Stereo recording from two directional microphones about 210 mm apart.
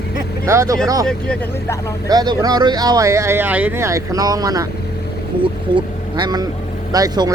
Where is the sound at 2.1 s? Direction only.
15° right (ahead or behind).